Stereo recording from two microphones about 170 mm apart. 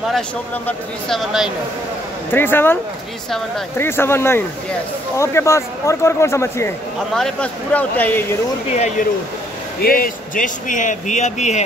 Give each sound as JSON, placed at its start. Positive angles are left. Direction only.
{"t": 0.7, "sound": "speech", "side_deg": 0}
{"t": 2.3, "sound": "speech", "side_deg": 10}
{"t": 3.3, "sound": "speech", "side_deg": 0}
{"t": 3.7, "sound": "speech", "side_deg": 15}
{"t": 7.2, "sound": "speech", "side_deg": 5}
{"t": 9.8, "sound": "speech", "side_deg": 60}